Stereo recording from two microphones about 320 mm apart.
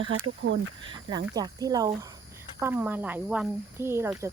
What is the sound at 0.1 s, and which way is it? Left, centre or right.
Speech, right.